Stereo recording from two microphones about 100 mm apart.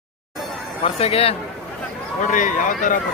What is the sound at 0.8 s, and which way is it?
Speech, 75° left (ahead or behind).